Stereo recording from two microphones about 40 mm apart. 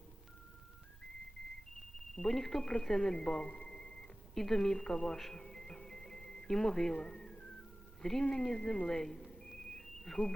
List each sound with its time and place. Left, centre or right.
2.1 s a woman's voice: centre
5.3 s music: centre
8.0 s a woman's voice: centre
8.9 s a sound: centre